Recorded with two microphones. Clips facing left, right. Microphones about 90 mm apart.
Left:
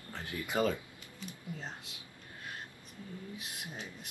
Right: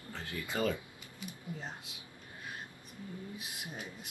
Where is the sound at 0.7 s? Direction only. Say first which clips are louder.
Left 1 dB; 10° right (ahead or behind).